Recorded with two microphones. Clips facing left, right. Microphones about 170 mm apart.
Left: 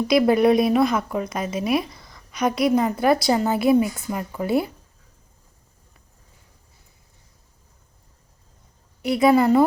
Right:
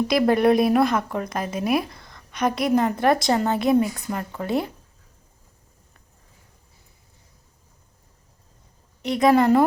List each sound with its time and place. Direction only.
0.1 s a woman's voice: centre (ahead or behind)
9.0 s a woman's voice: 10° left (ahead or behind)